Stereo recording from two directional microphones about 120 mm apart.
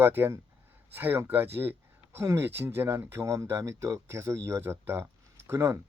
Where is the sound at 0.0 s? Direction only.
20° right (ahead or behind).